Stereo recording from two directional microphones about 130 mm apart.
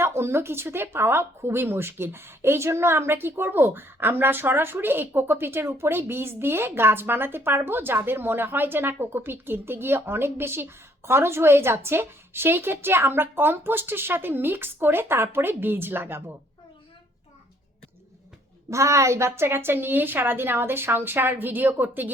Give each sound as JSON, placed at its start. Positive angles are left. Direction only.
{"t": 0.0, "sound": "speech", "side_deg": -20}
{"t": 18.7, "sound": "speech", "side_deg": -25}